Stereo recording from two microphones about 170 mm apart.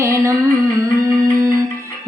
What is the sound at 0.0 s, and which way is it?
Music, 15° right (ahead or behind).